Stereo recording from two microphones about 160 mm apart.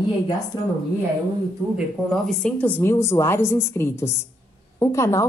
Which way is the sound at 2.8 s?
15° left (ahead or behind).